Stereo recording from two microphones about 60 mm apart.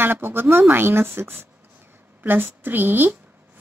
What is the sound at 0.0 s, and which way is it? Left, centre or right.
A woman's voice, right.